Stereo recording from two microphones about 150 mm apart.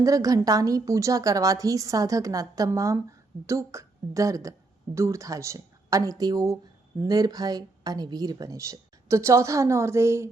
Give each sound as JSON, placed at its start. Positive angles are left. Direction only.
{"t": 0.0, "sound": "a woman's voice", "side_deg": -25}